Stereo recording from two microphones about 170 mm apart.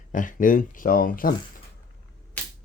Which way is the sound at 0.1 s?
50° left (ahead or behind).